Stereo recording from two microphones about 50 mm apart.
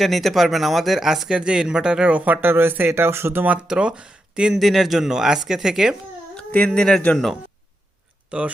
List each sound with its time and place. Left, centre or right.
0.0 s speech: centre
2.1 s speech: right
3.4 s speech: right
3.7 s speech: centre
4.5 s speech: centre
6.5 s speech: centre
8.3 s speech: right